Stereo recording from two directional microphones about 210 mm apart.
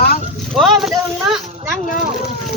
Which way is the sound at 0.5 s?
Centre (ahead or behind).